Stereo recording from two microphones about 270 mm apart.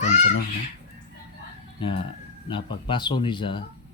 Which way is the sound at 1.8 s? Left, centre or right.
Centre.